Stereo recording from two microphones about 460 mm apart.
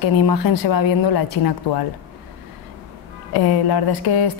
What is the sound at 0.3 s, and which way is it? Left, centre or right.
Speech, left.